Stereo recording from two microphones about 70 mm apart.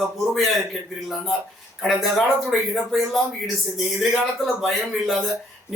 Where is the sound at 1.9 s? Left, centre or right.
Centre.